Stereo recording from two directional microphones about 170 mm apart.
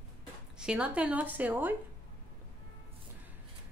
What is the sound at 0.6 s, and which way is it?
A woman's voice, 5° right (ahead or behind).